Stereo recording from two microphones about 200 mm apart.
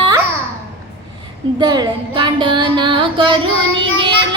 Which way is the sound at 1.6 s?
20° right (ahead or behind).